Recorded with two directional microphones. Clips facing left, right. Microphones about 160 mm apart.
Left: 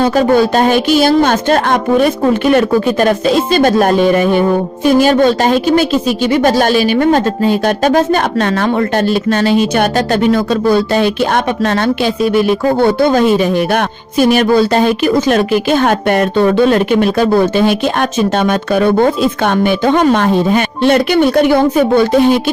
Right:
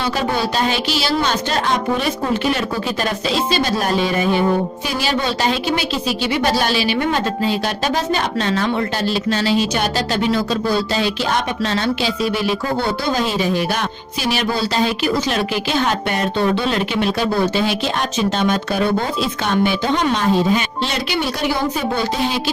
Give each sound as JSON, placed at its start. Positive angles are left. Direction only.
{"t": 0.0, "sound": "a woman's voice", "side_deg": 50}